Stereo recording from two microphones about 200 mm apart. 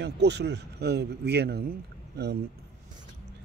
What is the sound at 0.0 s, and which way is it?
A man's voice, 55° right (ahead or behind).